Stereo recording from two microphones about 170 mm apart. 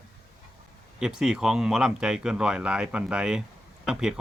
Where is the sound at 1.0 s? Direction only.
5° right (ahead or behind).